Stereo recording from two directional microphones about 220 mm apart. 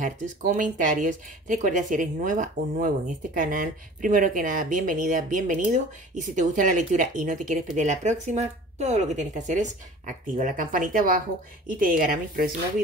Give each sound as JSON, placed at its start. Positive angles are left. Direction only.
{"t": 0.0, "sound": "speech", "side_deg": -35}